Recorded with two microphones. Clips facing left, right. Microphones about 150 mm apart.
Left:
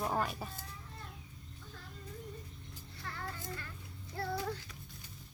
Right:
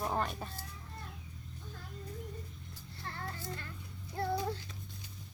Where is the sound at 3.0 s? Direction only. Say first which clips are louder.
Right 1 dB; 30° right (ahead or behind).